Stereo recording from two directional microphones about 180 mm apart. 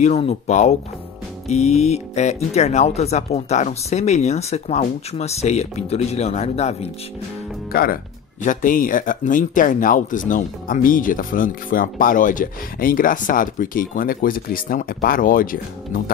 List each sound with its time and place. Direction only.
0.0 s speech: 35° left (ahead or behind)
7.7 s speech: 55° left (ahead or behind)